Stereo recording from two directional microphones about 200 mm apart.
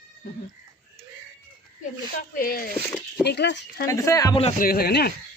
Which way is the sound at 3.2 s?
55° left (ahead or behind).